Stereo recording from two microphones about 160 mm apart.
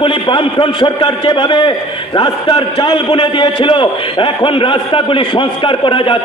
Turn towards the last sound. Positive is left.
turn(degrees=35)  # may be behind; listen again after turning